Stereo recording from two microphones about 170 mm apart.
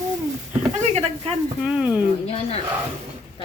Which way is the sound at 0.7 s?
40° right (ahead or behind).